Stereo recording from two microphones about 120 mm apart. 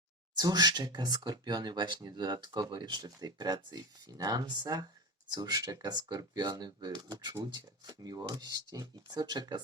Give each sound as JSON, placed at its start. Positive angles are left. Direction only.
{"t": 0.3, "sound": "speech", "side_deg": -35}